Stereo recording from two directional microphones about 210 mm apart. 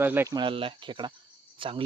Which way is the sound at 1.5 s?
25° right (ahead or behind).